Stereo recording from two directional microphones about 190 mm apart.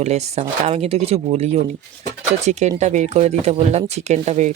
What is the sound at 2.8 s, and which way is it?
Speech, 35° right (ahead or behind).